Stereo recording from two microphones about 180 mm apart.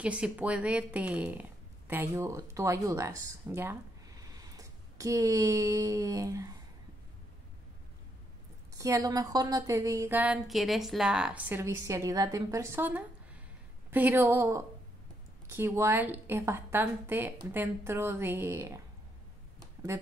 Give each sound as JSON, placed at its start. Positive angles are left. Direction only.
{"t": 0.0, "sound": "a woman's voice", "side_deg": -5}
{"t": 8.7, "sound": "a woman's voice", "side_deg": -20}